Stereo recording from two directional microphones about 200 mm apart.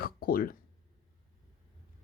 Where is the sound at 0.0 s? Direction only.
45° left (ahead or behind).